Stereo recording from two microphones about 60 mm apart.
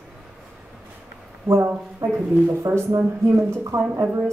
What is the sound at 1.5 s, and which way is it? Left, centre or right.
A woman's voice, right.